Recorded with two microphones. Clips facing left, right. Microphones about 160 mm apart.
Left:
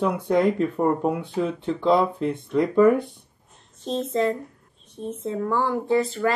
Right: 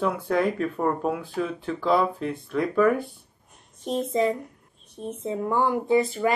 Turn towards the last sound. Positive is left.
turn(degrees=-15)  # may be behind; listen again after turning